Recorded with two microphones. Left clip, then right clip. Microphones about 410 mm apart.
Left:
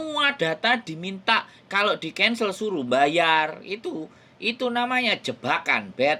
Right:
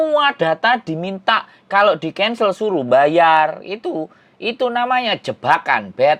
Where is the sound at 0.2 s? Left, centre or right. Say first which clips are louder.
Right 7 dB; right.